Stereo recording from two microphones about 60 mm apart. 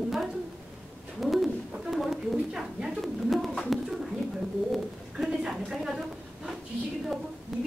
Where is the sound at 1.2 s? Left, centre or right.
Centre.